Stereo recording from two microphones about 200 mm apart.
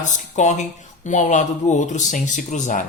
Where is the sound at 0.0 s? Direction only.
35° left (ahead or behind).